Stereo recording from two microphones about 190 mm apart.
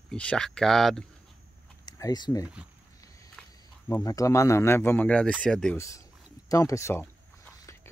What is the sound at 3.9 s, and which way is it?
Speech, 20° left (ahead or behind).